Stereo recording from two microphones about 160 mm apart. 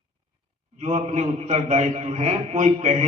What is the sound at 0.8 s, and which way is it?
A man's voice, 45° right (ahead or behind).